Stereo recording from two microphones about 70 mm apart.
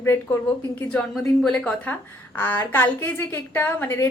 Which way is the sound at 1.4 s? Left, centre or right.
Centre.